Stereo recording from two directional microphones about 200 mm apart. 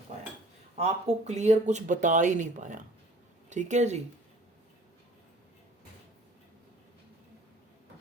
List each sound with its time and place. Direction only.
0.1 s cutlery: 35° right (ahead or behind)
0.8 s speech: 35° right (ahead or behind)